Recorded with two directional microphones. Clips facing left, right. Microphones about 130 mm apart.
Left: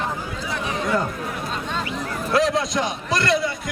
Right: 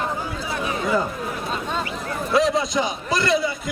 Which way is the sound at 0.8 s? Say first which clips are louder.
Right 1 dB; centre (ahead or behind).